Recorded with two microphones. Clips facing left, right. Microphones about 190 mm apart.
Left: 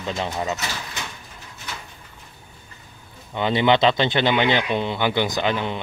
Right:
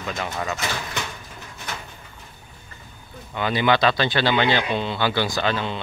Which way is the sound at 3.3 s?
25° left (ahead or behind).